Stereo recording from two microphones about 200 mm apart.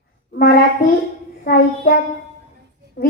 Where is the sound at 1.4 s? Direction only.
50° left (ahead or behind).